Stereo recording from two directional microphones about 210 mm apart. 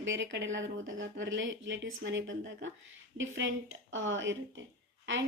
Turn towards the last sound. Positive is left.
turn(degrees=-60)  # may be behind; listen again after turning